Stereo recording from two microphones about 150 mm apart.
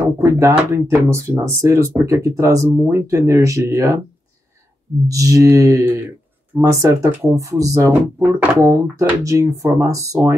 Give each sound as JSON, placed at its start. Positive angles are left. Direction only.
{"t": 0.2, "sound": "speech", "side_deg": -20}
{"t": 5.0, "sound": "speech", "side_deg": -20}